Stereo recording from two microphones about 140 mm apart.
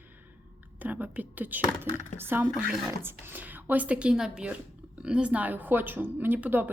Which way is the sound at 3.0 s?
15° right (ahead or behind).